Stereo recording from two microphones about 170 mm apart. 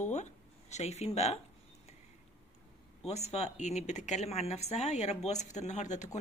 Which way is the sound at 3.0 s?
40° left (ahead or behind).